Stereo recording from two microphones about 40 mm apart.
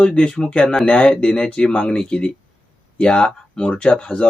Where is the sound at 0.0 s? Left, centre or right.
Left.